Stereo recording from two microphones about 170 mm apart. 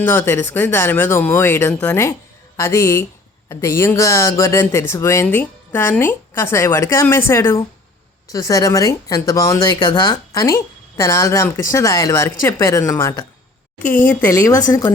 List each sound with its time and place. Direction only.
0.0 s speech: 10° left (ahead or behind)